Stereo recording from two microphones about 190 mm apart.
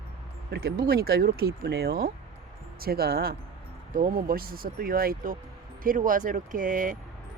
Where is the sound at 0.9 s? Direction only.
55° right (ahead or behind).